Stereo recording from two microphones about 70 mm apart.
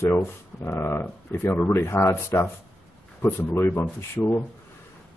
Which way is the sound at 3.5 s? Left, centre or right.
Left.